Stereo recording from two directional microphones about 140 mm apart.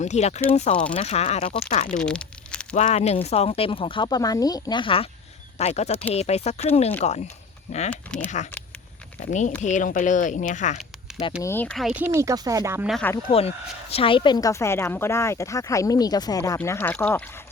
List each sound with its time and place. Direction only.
0.0 s speech: 55° left (ahead or behind)
2.0 s crumpling: 5° left (ahead or behind)
2.7 s speech: 55° left (ahead or behind); by 5.0 s 40° left (ahead or behind)
5.5 s speech: 50° left (ahead or behind)
7.9 s speech: 10° left (ahead or behind)
9.2 s speech: 60° left (ahead or behind)
11.4 s speech: 15° left (ahead or behind)
11.8 s speech: 5° right (ahead or behind)
12.0 s speech: 20° right (ahead or behind)
13.0 s speech: 15° left (ahead or behind)
13.9 s a woman's voice: 40° left (ahead or behind)
16.6 s speech: 15° left (ahead or behind)